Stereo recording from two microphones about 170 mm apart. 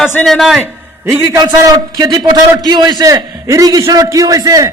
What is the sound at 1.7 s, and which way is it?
A man's voice, 25° right (ahead or behind).